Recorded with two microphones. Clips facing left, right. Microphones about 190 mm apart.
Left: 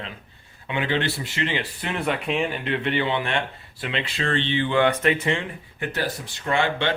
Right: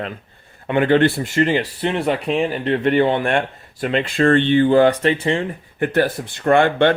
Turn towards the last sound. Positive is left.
turn(degrees=-55)  # may be behind; listen again after turning